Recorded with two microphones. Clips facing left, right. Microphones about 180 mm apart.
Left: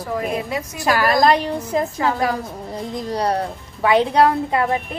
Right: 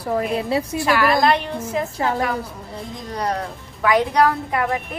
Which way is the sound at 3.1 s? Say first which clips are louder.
Left 3 dB; 30° left (ahead or behind).